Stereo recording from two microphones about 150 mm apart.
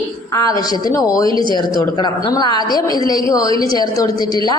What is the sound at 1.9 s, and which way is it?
A woman's voice, 30° left (ahead or behind).